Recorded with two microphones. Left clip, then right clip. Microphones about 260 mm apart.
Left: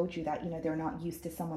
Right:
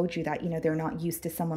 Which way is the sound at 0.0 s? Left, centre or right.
Right.